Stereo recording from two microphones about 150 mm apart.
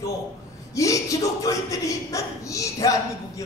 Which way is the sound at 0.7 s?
20° left (ahead or behind).